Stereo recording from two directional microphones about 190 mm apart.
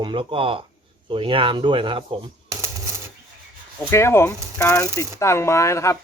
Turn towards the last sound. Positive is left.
turn(degrees=15)  # may be behind; listen again after turning